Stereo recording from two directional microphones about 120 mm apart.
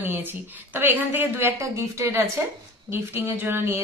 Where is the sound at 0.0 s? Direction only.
15° right (ahead or behind).